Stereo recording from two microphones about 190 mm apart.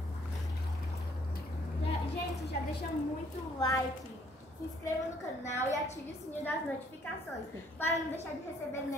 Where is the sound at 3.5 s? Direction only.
15° left (ahead or behind).